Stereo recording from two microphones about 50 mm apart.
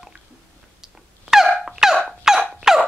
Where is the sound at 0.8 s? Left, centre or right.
Centre.